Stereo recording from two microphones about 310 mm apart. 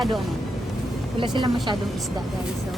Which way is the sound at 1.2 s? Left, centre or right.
Centre.